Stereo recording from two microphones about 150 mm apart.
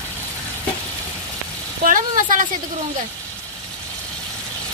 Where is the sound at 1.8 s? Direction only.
65° right (ahead or behind).